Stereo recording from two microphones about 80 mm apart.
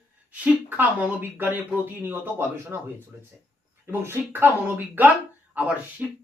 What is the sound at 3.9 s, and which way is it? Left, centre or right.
Speech, right.